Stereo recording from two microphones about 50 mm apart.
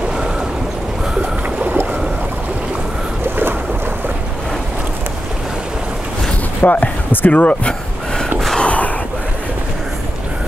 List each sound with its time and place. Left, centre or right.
1.2 s boat: right
6.6 s speech: left
7.2 s speech: left
8.5 s a sound: left